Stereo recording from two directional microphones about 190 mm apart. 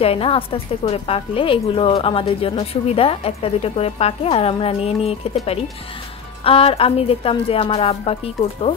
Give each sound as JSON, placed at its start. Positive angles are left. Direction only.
{"t": 0.0, "sound": "speech", "side_deg": 30}